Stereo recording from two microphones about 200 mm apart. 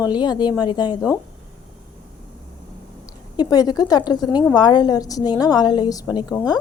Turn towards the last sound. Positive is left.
turn(degrees=20)  # may be behind; listen again after turning